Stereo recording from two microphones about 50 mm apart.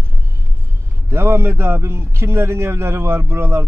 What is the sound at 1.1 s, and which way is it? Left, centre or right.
A man's voice, right.